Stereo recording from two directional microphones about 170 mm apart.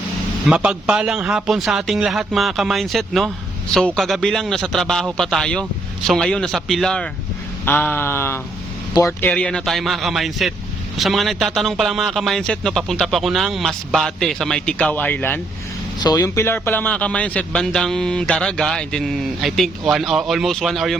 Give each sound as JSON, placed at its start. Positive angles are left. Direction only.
{"t": 0.4, "sound": "a man's voice", "side_deg": -5}
{"t": 7.6, "sound": "a sound", "side_deg": 10}
{"t": 9.3, "sound": "a man's voice", "side_deg": 5}
{"t": 16.0, "sound": "a man's voice", "side_deg": 20}